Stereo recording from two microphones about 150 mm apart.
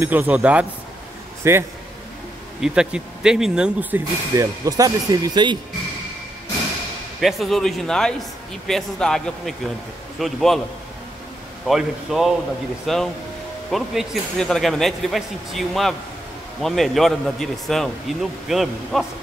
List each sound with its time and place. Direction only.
0.0 s speech: 10° right (ahead or behind)
2.6 s speech: 5° right (ahead or behind)
4.4 s speech: 25° right (ahead or behind)
7.2 s speech: centre (ahead or behind)
11.6 s speech: centre (ahead or behind)